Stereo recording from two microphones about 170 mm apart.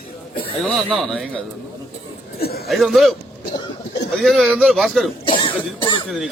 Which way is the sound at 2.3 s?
65° left (ahead or behind).